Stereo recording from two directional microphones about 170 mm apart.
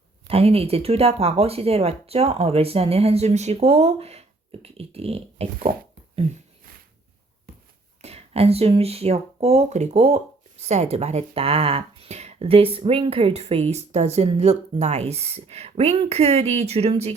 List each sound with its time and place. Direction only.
0.3 s speech: 35° right (ahead or behind)
5.7 s speech: 60° right (ahead or behind)
8.0 s speech: 35° right (ahead or behind)